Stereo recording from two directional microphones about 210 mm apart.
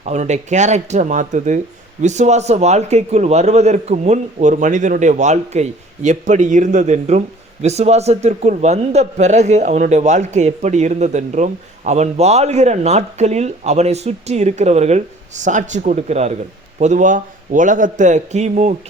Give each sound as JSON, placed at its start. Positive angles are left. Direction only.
{"t": 0.0, "sound": "speech", "side_deg": -35}